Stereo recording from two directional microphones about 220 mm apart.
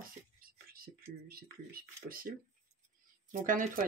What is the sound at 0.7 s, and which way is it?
Speech, 40° right (ahead or behind).